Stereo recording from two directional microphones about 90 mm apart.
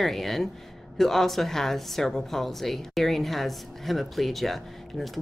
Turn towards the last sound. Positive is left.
turn(degrees=0)  # may be behind; listen again after turning